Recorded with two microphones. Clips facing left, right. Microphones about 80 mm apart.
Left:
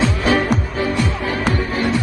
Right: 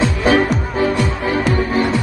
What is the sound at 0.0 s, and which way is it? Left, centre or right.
Music, right.